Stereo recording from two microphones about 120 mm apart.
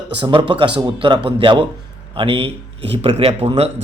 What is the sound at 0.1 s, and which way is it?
Speech, 45° right (ahead or behind).